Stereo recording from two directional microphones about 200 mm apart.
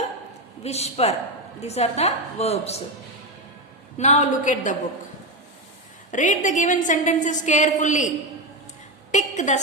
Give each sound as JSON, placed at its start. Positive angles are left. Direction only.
{"t": 0.6, "sound": "a woman's voice", "side_deg": 30}
{"t": 3.9, "sound": "a woman's voice", "side_deg": 35}
{"t": 6.1, "sound": "a woman's voice", "side_deg": 40}
{"t": 9.1, "sound": "a woman's voice", "side_deg": 35}